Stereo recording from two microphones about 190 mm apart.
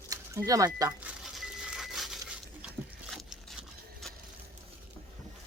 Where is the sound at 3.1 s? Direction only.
Centre (ahead or behind).